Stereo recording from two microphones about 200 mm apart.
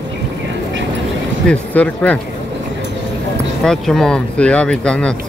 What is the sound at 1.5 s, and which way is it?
Speech, 5° left (ahead or behind).